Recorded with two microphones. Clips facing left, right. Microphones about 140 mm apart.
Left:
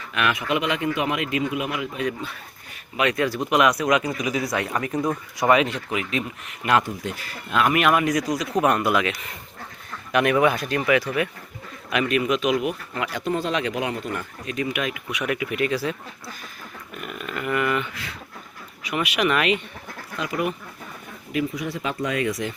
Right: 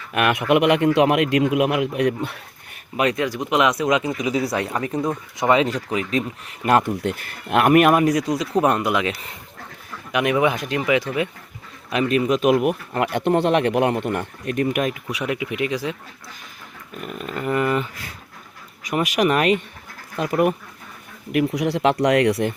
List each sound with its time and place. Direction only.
0.1 s speech: 50° right (ahead or behind)
3.2 s speech: 15° right (ahead or behind)
4.9 s speech: 5° right (ahead or behind)
5.4 s speech: 25° right (ahead or behind)
5.6 s speech: 35° right (ahead or behind)
6.9 s speech: 60° right (ahead or behind); by 9.0 s 20° right (ahead or behind)
10.1 s speech: 15° right (ahead or behind)
11.9 s speech: 30° right (ahead or behind)
12.4 s speech: 50° right (ahead or behind)
15.2 s speech: 20° right (ahead or behind)
17.0 s speech: 35° right (ahead or behind)
21.3 s speech: 75° right (ahead or behind)